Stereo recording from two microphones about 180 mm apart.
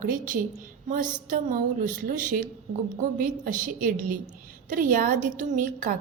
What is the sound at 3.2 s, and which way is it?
A woman's voice, 50° right (ahead or behind).